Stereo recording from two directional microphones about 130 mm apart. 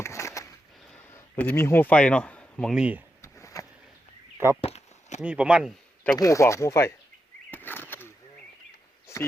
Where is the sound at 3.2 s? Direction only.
20° left (ahead or behind).